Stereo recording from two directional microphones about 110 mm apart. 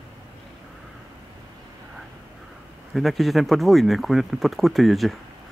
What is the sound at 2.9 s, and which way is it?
Speech, centre (ahead or behind).